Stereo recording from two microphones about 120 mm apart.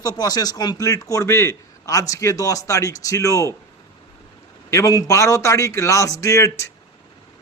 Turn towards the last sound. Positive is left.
turn(degrees=25)  # may be behind; listen again after turning